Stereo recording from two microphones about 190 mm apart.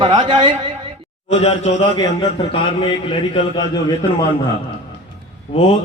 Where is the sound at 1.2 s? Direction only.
35° left (ahead or behind).